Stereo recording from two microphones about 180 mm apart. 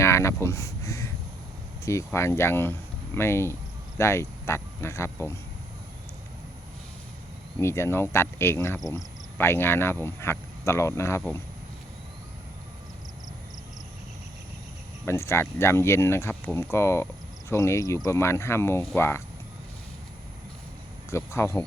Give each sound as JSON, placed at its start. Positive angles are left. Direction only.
{"t": 0.0, "sound": "speech", "side_deg": 15}
{"t": 7.6, "sound": "speech", "side_deg": 15}
{"t": 15.0, "sound": "speech", "side_deg": 15}
{"t": 21.1, "sound": "speech", "side_deg": 15}